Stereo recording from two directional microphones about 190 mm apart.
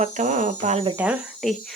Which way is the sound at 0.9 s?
5° right (ahead or behind).